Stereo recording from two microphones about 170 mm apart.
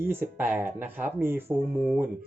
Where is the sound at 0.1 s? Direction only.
15° right (ahead or behind).